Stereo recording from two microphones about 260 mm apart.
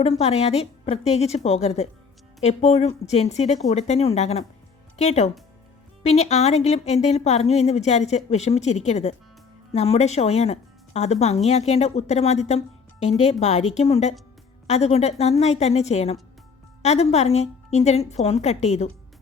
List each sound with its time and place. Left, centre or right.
0.0 s speech: left